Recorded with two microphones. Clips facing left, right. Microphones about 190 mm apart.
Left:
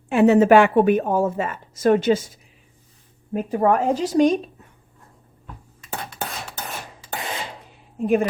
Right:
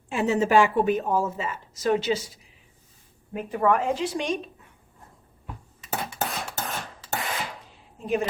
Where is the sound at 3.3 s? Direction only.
35° left (ahead or behind).